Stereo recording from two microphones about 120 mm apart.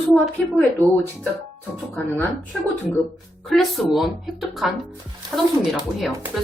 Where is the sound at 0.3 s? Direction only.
10° left (ahead or behind).